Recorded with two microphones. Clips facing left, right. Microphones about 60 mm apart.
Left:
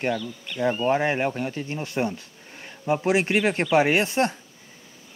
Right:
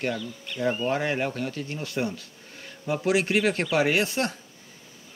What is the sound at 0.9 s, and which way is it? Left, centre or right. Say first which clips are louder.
Speech: left 4 dB; left.